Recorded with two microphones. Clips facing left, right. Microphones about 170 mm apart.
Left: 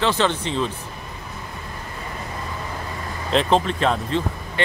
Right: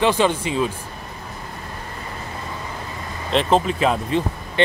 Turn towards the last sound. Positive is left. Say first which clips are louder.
# right 2 dB
turn(degrees=-5)  # may be behind; listen again after turning